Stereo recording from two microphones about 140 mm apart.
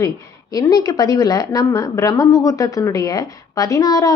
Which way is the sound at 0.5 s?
25° left (ahead or behind).